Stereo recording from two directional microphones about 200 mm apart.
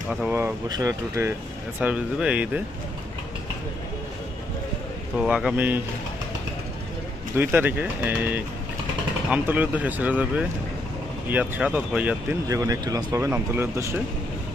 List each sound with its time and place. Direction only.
0.1 s speech: 5° right (ahead or behind)
1.8 s speech: 5° right (ahead or behind)
5.1 s speech: 5° right (ahead or behind)
7.3 s speech: 10° right (ahead or behind)